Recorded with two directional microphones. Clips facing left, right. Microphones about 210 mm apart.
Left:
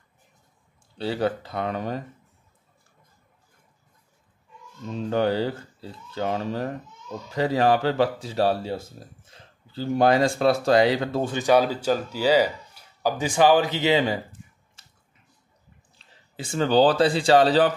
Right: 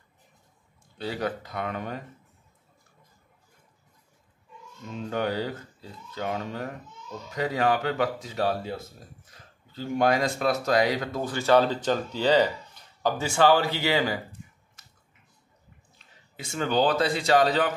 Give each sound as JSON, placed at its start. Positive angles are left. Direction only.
{"t": 0.9, "sound": "speech", "side_deg": 30}
{"t": 4.9, "sound": "speech", "side_deg": 30}
{"t": 11.4, "sound": "speech", "side_deg": 10}
{"t": 16.0, "sound": "speech", "side_deg": 30}